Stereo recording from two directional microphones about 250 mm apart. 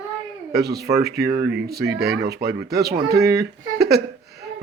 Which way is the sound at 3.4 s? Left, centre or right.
Right.